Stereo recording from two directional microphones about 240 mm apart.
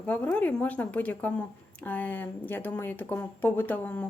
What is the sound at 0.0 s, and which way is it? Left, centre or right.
A woman's voice, centre.